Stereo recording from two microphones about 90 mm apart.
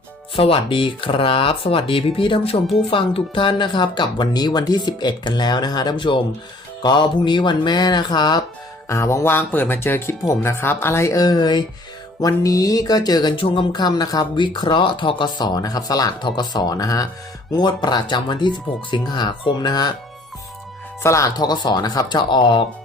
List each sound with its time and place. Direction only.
0.3 s speech: 90° left; by 8.4 s 50° left (ahead or behind)
8.9 s music: 35° left (ahead or behind)
9.5 s speech: 20° left (ahead or behind); by 11.6 s 50° left (ahead or behind)
12.2 s speech: 40° left (ahead or behind)
13.3 s speech: 75° left (ahead or behind); by 17.1 s 40° left (ahead or behind)
17.6 s speech: 55° left (ahead or behind)
21.0 s music: 35° left (ahead or behind)
21.3 s speech: 50° left (ahead or behind)